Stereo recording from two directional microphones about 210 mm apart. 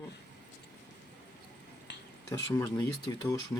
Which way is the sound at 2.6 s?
15° left (ahead or behind).